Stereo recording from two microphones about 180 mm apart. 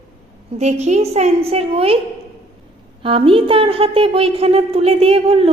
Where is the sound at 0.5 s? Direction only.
40° right (ahead or behind).